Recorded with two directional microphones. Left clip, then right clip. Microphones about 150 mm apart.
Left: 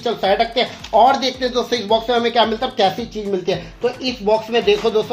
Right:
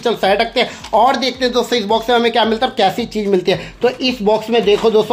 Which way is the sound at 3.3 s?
80° right.